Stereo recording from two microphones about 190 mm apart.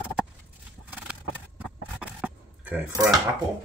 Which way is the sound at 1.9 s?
5° right (ahead or behind).